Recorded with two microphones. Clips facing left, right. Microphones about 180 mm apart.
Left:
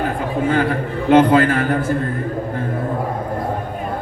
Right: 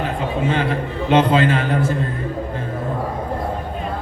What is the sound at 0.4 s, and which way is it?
A man's voice, 25° right (ahead or behind).